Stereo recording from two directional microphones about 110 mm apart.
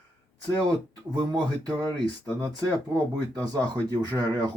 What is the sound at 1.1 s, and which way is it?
Speech, 40° right (ahead or behind).